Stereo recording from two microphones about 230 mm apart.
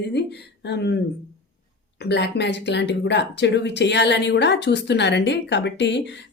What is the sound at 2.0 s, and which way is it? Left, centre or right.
Speech, left.